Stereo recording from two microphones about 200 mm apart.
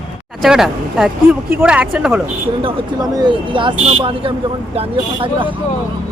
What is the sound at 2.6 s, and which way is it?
Speech, 25° right (ahead or behind).